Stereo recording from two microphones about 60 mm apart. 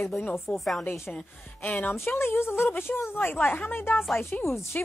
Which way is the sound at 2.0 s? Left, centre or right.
Left.